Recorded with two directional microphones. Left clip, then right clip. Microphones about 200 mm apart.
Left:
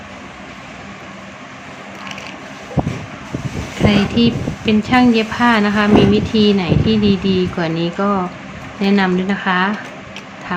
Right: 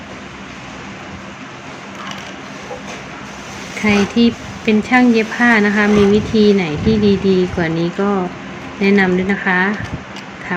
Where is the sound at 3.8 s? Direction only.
10° right (ahead or behind).